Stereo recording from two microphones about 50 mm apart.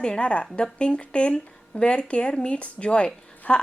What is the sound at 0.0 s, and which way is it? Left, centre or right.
A woman's voice, centre.